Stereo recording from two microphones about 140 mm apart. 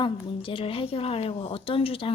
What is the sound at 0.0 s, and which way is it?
Speech, 40° left (ahead or behind).